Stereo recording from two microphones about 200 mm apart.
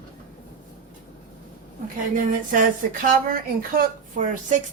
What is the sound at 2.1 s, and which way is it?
Speech, 40° right (ahead or behind).